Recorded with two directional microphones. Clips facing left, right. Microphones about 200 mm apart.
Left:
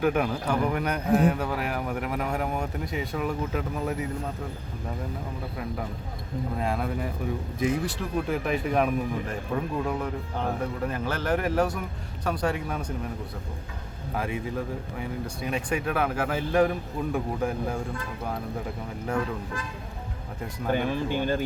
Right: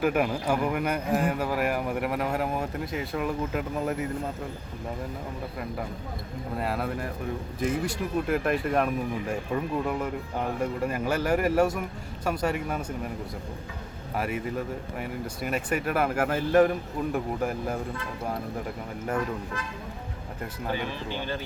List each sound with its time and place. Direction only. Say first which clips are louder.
0.0 s a man's voice: even; 5° right (ahead or behind)
6.6 s a man's voice: even; 5° right (ahead or behind)
14.2 s a man's voice: right 1 dB; 5° right (ahead or behind)
15.4 s a man's voice: even; 5° right (ahead or behind)
20.7 s speech: left 6 dB; 50° left (ahead or behind)